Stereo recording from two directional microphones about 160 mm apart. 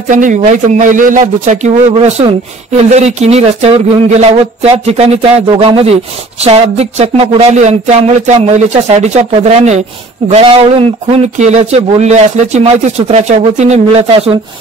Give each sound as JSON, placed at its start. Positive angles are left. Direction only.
{"t": 0.1, "sound": "speech", "side_deg": -50}